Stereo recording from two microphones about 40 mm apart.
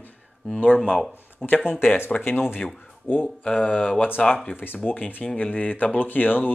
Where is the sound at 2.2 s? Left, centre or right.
Left.